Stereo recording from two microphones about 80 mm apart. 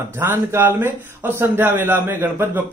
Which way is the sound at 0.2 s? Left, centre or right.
Right.